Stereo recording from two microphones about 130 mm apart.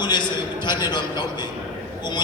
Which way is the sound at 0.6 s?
35° left (ahead or behind).